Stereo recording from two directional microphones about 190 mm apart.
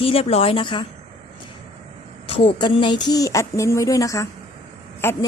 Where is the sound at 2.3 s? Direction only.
25° left (ahead or behind).